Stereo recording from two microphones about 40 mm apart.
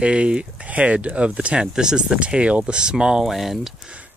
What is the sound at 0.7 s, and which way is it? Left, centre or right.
Speech, right.